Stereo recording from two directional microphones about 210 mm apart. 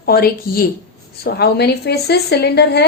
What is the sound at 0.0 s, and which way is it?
Speech, 45° left (ahead or behind).